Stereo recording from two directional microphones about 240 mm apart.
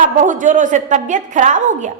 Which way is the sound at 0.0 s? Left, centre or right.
Right.